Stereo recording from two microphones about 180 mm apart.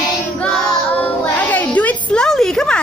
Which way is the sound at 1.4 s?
10° left (ahead or behind).